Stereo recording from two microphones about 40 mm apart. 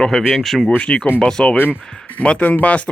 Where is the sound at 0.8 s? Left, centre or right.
Left.